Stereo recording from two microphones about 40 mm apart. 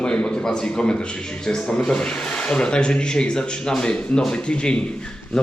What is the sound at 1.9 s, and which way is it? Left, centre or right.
A man's voice, left.